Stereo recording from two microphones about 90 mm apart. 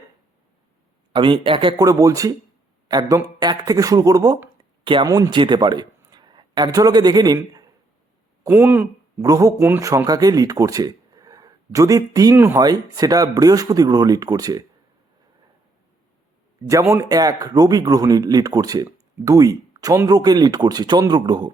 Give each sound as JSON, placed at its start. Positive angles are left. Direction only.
{"t": 1.1, "sound": "speech", "side_deg": -65}
{"t": 1.7, "sound": "speech", "side_deg": -40}
{"t": 3.4, "sound": "speech", "side_deg": -45}
{"t": 4.8, "sound": "speech", "side_deg": -70}
{"t": 5.0, "sound": "speech", "side_deg": -40}
{"t": 5.3, "sound": "a man's voice", "side_deg": -60}
{"t": 8.4, "sound": "speech", "side_deg": -20}
{"t": 9.2, "sound": "speech", "side_deg": -40}
{"t": 9.6, "sound": "speech", "side_deg": -25}
{"t": 9.8, "sound": "speech", "side_deg": -40}
{"t": 12.3, "sound": "speech", "side_deg": -25}
{"t": 12.5, "sound": "speech", "side_deg": -45}
{"t": 16.9, "sound": "speech", "side_deg": -40}